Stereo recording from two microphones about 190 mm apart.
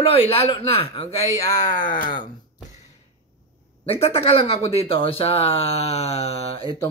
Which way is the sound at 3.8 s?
30° left (ahead or behind).